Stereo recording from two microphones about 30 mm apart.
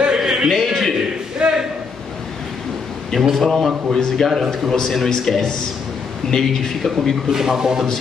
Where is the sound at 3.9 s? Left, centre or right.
Centre.